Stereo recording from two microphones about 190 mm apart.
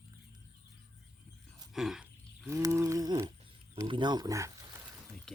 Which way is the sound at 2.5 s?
15° right (ahead or behind).